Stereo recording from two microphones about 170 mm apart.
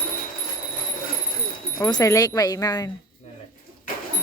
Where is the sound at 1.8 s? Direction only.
20° left (ahead or behind).